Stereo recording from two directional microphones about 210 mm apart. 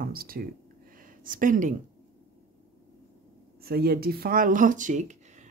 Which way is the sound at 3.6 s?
50° right (ahead or behind).